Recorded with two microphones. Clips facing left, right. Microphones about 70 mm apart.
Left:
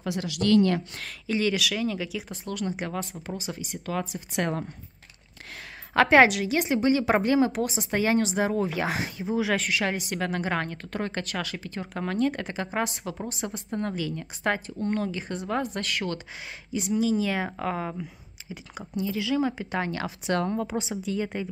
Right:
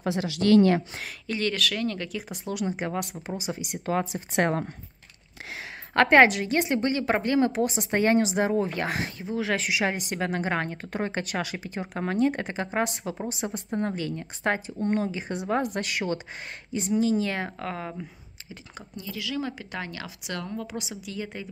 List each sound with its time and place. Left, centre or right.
0.0 s speech: right
1.2 s speech: centre
2.4 s speech: centre; by 4.0 s right
4.4 s speech: right
5.9 s a woman's voice: centre
9.6 s speech: centre
12.4 s a woman's voice: centre
17.0 s speech: centre
18.5 s speech: centre